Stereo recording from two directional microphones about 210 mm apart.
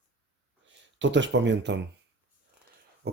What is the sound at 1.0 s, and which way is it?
Speech, 60° right (ahead or behind).